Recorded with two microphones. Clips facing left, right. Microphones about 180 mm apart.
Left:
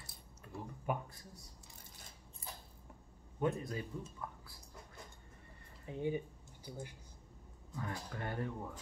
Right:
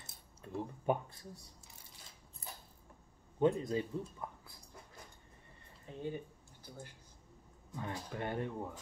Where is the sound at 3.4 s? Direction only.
25° right (ahead or behind).